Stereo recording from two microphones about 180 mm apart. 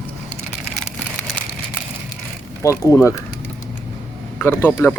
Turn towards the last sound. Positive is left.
turn(degrees=10)  # may be behind; listen again after turning